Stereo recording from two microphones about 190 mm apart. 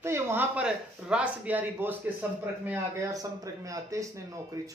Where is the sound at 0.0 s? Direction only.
15° right (ahead or behind).